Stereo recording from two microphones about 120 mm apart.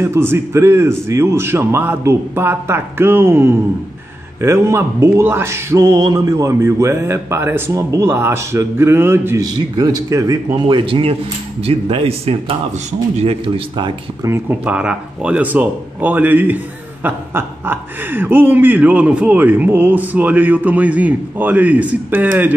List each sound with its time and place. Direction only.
0.0 s speech: 20° right (ahead or behind)
9.4 s speech: 30° right (ahead or behind)
10.7 s a man's voice: 45° right (ahead or behind); by 13.4 s 60° right (ahead or behind)
14.2 s speech: 20° right (ahead or behind)